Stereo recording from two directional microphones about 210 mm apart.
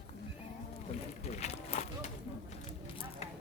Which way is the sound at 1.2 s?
30° left (ahead or behind).